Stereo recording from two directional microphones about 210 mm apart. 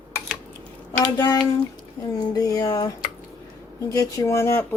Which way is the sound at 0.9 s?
20° left (ahead or behind).